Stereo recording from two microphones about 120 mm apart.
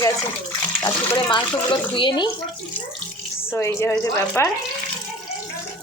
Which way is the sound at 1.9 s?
40° left (ahead or behind).